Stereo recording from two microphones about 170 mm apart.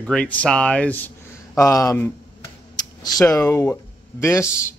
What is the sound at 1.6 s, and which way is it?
Speech, 20° left (ahead or behind).